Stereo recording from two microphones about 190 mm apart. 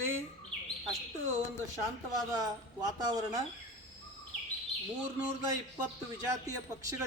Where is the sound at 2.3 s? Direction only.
20° right (ahead or behind).